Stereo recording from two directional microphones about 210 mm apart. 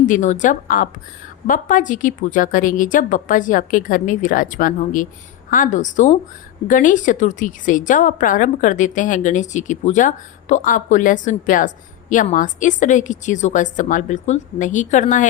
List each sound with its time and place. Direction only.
0.0 s a woman's voice: 35° left (ahead or behind)